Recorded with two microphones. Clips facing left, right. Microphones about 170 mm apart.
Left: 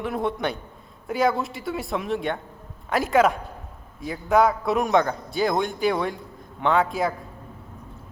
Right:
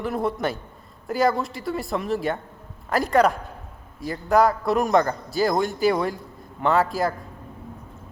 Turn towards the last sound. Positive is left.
turn(degrees=0)  # may be behind; listen again after turning